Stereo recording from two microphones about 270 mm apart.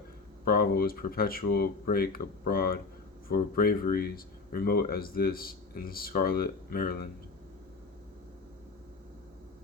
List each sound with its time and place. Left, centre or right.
0.4 s speech: left